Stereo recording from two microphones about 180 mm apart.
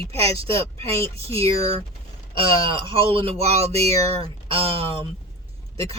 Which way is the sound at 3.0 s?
35° right (ahead or behind).